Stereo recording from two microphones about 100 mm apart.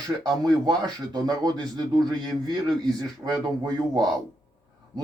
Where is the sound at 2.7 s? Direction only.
5° left (ahead or behind).